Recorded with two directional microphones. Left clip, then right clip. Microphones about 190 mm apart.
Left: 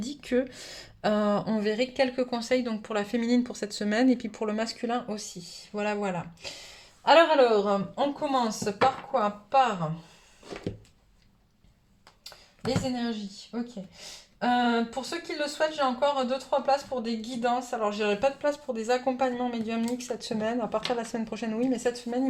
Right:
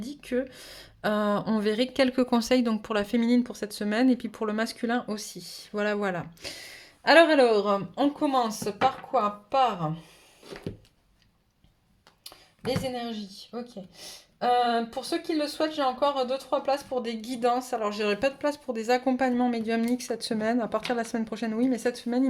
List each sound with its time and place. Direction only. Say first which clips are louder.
0.0 s a woman's voice: left 2 dB; 5° right (ahead or behind); by 6.6 s 50° right (ahead or behind)
7.0 s speech: right 1 dB; 35° right (ahead or behind)
13.0 s speech: left 1 dB; 50° right (ahead or behind)
14.3 s speech: right 2 dB; 50° right (ahead or behind); by 22.2 s 30° right (ahead or behind)